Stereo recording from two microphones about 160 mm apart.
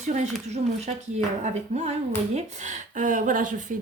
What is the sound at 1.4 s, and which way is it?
A woman's voice, 45° right (ahead or behind).